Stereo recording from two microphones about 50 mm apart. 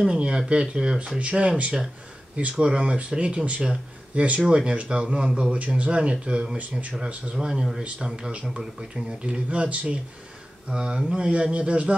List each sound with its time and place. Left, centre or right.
0.0 s speech: centre
7.3 s speech: centre